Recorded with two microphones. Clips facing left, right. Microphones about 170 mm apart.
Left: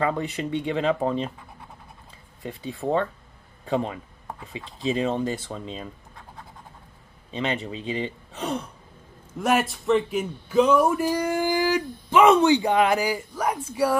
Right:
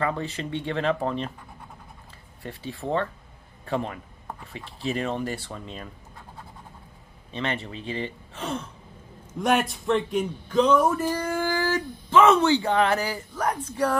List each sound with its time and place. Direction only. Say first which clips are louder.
0.0 s a man's voice: left 3 dB; 20° left (ahead or behind)
2.4 s a man's voice: left 4 dB; 20° left (ahead or behind)
7.2 s a man's voice: left 2 dB; 15° left (ahead or behind)
9.4 s a man's voice: even; centre (ahead or behind)